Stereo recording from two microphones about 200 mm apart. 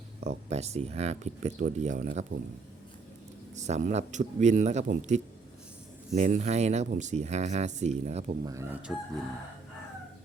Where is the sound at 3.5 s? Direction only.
35° right (ahead or behind).